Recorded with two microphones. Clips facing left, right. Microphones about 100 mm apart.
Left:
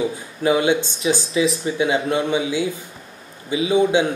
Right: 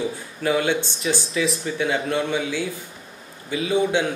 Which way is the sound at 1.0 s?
20° left (ahead or behind).